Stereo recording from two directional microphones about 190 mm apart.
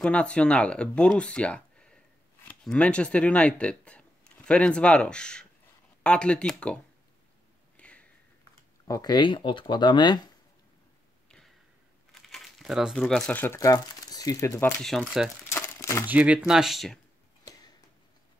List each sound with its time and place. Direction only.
0.0 s speech: 5° left (ahead or behind)
7.7 s a sound: 5° left (ahead or behind)
8.8 s speech: 20° left (ahead or behind)
11.2 s a sound: 5° left (ahead or behind)
12.1 s speech: centre (ahead or behind)
14.8 s speech: centre (ahead or behind)
15.5 s crumpling: 15° left (ahead or behind)
16.1 s speech: 5° right (ahead or behind)